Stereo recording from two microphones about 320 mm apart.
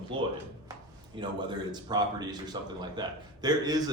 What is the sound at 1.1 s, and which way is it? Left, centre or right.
A man's voice, centre.